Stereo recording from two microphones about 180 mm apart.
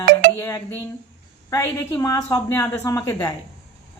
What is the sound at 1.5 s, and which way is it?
A man's voice, 15° left (ahead or behind).